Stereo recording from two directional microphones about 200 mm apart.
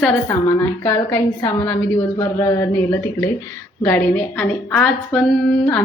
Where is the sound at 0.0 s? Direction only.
15° left (ahead or behind).